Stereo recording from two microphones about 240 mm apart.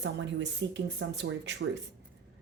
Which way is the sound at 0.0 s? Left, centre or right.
Right.